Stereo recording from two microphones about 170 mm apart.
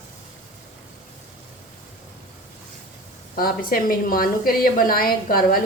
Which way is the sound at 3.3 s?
55° left (ahead or behind).